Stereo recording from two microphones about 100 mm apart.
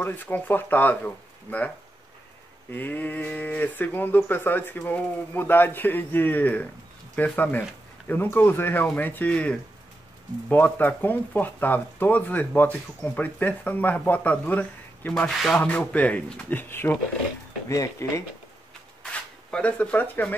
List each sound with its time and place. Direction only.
0.0 s speech: 20° left (ahead or behind)
2.7 s speech: 20° left (ahead or behind); by 15.6 s 5° left (ahead or behind)
15.6 s speech: 15° left (ahead or behind); by 18.2 s 30° left (ahead or behind)
19.5 s speech: 15° left (ahead or behind)